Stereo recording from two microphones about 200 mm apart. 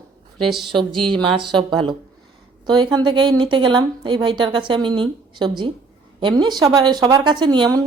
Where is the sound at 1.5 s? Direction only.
25° right (ahead or behind).